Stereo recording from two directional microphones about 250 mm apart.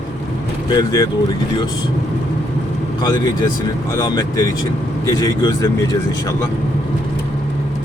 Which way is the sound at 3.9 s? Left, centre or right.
Centre.